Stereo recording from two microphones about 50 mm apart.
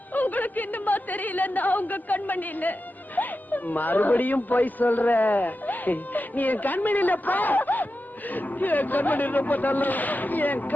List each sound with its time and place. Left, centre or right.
0.1 s a woman's voice: left